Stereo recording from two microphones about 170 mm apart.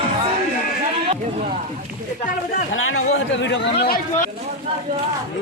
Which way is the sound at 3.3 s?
90° left.